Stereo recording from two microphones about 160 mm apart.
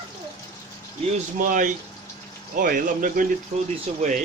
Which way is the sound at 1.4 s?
55° right (ahead or behind).